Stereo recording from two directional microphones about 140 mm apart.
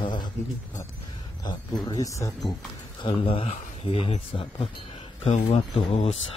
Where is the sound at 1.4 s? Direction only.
30° left (ahead or behind).